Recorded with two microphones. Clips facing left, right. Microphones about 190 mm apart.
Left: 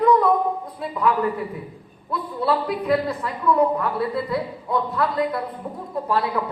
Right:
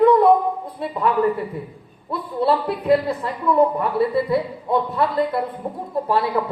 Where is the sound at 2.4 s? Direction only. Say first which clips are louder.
Right 3 dB; 25° right (ahead or behind).